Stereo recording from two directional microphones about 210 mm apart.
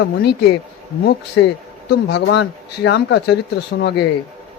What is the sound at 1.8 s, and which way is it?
Speech, 55° left (ahead or behind).